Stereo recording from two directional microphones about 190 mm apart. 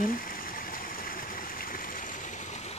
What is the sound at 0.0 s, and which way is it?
Stream, 50° left (ahead or behind).